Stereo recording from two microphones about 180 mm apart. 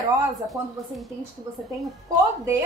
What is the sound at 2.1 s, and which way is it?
Speech, 20° right (ahead or behind).